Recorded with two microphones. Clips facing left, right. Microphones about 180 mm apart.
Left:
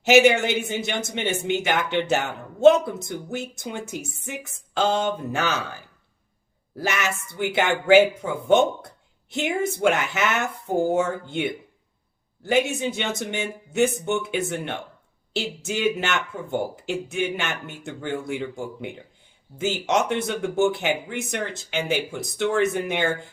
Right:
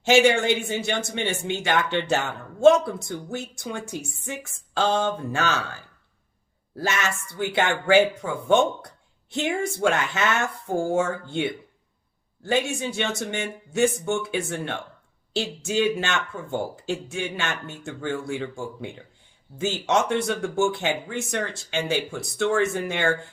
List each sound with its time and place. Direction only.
0.1 s a man's voice: 20° left (ahead or behind)
6.7 s a man's voice: 20° left (ahead or behind)
9.3 s a man's voice: 20° left (ahead or behind)
15.8 s a man's voice: 20° left (ahead or behind)